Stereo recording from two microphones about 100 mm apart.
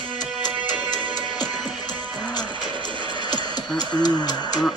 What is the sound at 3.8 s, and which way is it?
Music, 45° left (ahead or behind).